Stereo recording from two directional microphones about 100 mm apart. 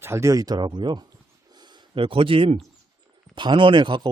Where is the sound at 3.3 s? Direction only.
55° right (ahead or behind).